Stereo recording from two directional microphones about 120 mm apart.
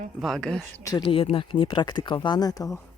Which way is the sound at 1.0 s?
50° left (ahead or behind).